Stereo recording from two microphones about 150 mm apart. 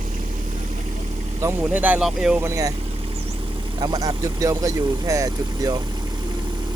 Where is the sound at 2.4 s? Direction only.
20° right (ahead or behind).